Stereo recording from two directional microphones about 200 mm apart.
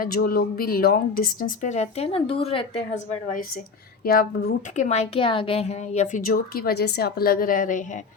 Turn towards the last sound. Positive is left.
turn(degrees=40)  # may be behind; listen again after turning